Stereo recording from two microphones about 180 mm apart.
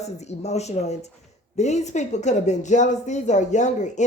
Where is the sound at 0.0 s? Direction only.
40° left (ahead or behind).